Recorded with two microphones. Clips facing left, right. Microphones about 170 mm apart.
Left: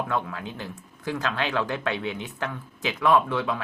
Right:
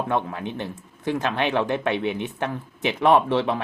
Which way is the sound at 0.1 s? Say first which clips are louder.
Right 4 dB; 25° right (ahead or behind).